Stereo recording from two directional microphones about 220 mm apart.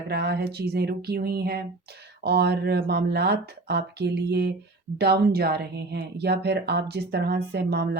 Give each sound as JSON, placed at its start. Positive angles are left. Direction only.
{"t": 0.1, "sound": "speech", "side_deg": -50}